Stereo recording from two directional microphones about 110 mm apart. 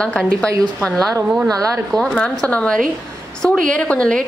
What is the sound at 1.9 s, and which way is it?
Speech, 5° left (ahead or behind).